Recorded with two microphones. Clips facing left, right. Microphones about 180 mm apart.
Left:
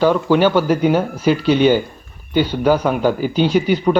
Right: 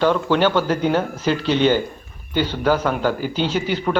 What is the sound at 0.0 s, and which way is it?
Speech, 10° left (ahead or behind).